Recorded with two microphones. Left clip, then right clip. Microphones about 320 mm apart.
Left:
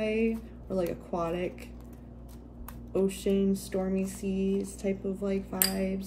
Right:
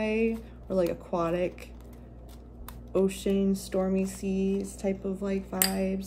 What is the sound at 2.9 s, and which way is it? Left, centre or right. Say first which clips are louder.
Speech: right 1 dB; centre.